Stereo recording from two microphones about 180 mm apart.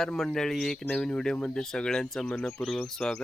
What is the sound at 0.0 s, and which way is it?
Speech, 5° left (ahead or behind).